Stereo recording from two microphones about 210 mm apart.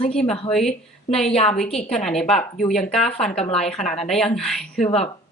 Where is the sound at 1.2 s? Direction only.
30° left (ahead or behind).